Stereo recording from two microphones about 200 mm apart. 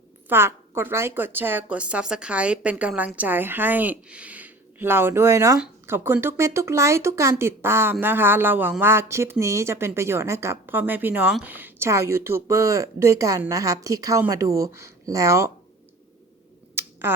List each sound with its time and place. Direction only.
0.3 s speech: 10° right (ahead or behind)
16.8 s finger snapping: 10° right (ahead or behind)